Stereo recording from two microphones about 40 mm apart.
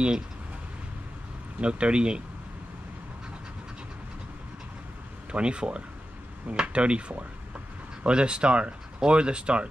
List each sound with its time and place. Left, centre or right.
1.6 s speech: right
5.3 s speech: right